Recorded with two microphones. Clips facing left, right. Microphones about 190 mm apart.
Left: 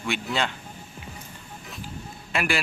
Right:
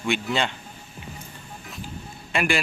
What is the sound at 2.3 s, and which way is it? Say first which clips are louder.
Speech: right 2 dB; 5° left (ahead or behind).